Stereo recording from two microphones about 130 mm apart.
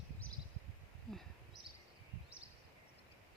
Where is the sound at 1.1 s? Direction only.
5° left (ahead or behind).